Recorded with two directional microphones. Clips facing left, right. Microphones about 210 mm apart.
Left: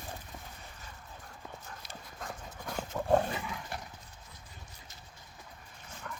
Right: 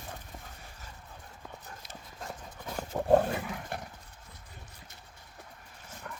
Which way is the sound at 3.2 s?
55° right (ahead or behind).